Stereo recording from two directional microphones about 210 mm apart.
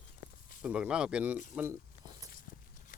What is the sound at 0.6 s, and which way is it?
Speech, 5° right (ahead or behind).